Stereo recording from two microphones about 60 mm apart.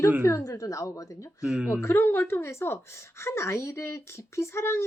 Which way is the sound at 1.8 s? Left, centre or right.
Left.